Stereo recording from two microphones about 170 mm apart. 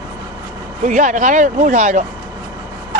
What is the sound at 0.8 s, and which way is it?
Speech, 45° right (ahead or behind).